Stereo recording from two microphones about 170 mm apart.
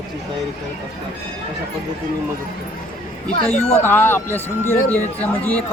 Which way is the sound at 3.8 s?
10° left (ahead or behind).